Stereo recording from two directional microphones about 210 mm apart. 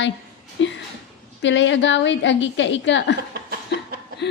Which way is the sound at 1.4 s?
60° left (ahead or behind).